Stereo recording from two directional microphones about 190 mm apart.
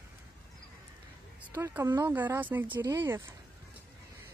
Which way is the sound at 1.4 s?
10° right (ahead or behind).